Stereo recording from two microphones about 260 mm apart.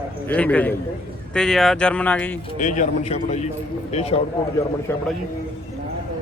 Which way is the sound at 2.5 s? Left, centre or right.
Left.